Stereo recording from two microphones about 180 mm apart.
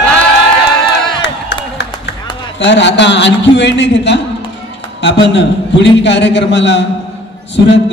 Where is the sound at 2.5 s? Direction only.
80° left.